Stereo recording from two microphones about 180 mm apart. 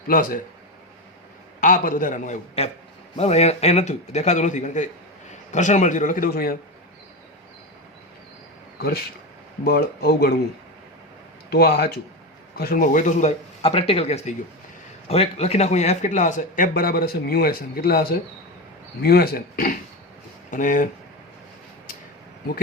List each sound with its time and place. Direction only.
1.6 s a man's voice: 45° left (ahead or behind)
9.6 s speech: 60° left (ahead or behind)
11.5 s a man's voice: 60° left (ahead or behind)
19.0 s a man's voice: 60° left (ahead or behind)